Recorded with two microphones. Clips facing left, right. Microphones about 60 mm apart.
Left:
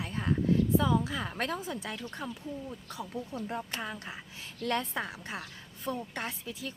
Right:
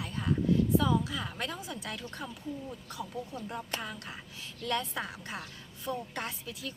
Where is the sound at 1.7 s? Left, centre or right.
Left.